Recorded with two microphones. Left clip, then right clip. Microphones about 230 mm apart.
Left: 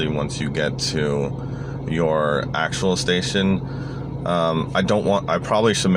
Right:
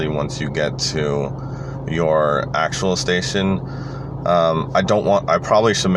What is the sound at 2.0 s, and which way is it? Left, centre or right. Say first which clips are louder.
Speech: right 4 dB; right.